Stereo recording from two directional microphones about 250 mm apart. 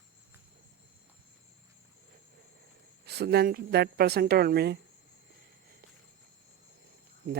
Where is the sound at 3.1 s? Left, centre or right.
Right.